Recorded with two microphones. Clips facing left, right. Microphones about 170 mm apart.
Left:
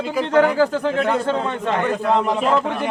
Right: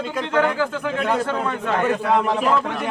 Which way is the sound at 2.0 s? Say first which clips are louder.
Left 1 dB; 5° right (ahead or behind).